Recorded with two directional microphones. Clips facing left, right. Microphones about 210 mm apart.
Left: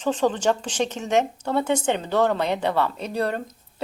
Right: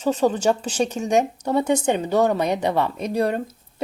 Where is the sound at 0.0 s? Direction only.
10° right (ahead or behind).